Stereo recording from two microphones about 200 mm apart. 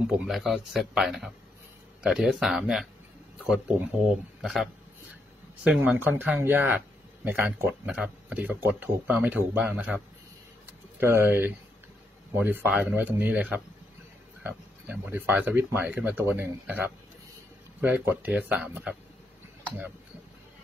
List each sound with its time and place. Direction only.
0.0 s speech: centre (ahead or behind)